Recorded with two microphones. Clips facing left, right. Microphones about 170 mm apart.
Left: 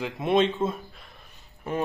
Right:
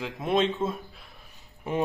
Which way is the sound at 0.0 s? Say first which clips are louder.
Left 3 dB; centre (ahead or behind).